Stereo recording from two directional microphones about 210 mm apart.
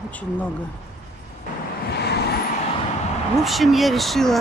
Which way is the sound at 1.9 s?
50° left (ahead or behind).